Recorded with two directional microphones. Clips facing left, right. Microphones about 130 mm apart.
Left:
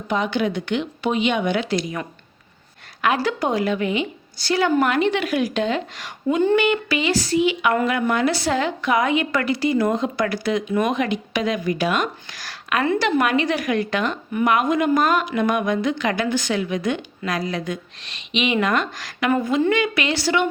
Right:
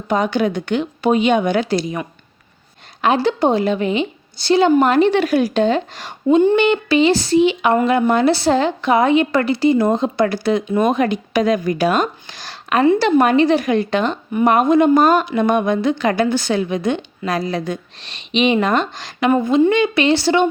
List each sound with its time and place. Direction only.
0.1 s speech: 40° right (ahead or behind)
3.0 s a woman's voice: 25° right (ahead or behind)
12.3 s a woman's voice: 25° right (ahead or behind)